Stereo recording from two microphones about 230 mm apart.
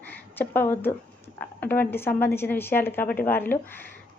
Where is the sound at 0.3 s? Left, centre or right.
Centre.